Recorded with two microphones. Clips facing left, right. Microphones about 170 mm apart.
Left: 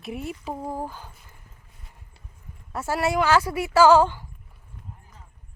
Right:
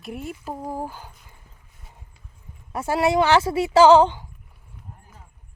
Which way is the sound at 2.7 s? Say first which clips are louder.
Right 4 dB; 15° right (ahead or behind).